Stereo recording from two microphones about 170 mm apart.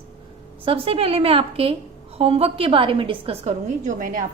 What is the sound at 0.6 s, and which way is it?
A woman's voice, 35° right (ahead or behind).